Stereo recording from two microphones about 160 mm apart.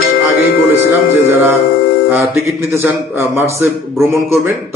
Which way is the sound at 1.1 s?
10° right (ahead or behind).